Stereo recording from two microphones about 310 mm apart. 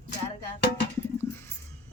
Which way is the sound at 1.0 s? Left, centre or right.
Centre.